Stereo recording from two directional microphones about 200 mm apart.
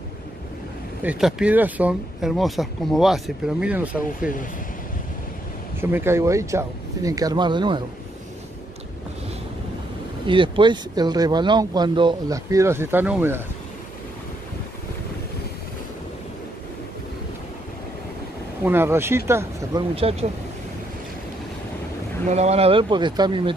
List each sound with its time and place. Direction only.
1.0 s speech: 5° right (ahead or behind)
5.8 s speech: 10° right (ahead or behind)
10.2 s speech: 25° right (ahead or behind); by 13.4 s 10° right (ahead or behind)
18.6 s speech: 10° right (ahead or behind)
20.0 s speech: 30° right (ahead or behind)
22.3 s speech: 30° right (ahead or behind)